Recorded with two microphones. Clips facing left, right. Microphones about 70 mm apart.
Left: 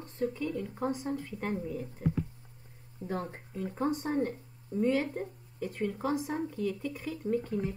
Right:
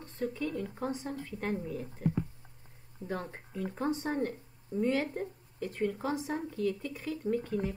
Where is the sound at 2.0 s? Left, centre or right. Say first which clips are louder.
Even; centre.